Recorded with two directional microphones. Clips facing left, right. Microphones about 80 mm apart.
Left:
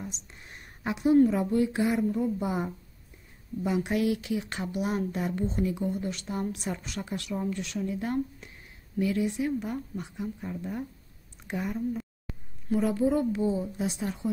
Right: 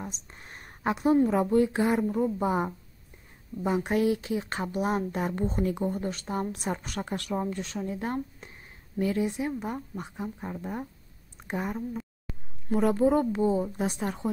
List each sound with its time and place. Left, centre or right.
0.0 s a sound: right
1.2 s a woman's voice: right
12.7 s a woman's voice: right